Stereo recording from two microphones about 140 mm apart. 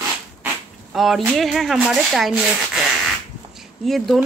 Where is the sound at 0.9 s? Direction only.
Centre (ahead or behind).